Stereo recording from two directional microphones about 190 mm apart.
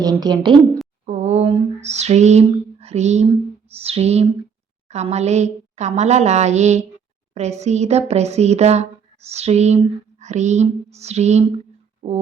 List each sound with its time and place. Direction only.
0.0 s a woman's voice: 20° right (ahead or behind)
1.0 s a sound: 35° right (ahead or behind)
3.8 s speech: 30° right (ahead or behind)